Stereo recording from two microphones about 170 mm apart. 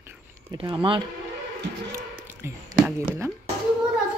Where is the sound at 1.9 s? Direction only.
10° right (ahead or behind).